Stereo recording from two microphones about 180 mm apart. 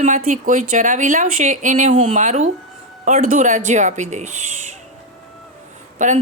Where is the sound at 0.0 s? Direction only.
45° right (ahead or behind).